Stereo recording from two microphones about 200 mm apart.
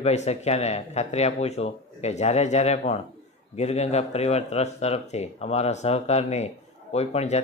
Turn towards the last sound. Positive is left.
turn(degrees=30)  # may be behind; listen again after turning